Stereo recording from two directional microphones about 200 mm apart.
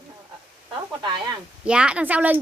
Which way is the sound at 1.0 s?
25° right (ahead or behind).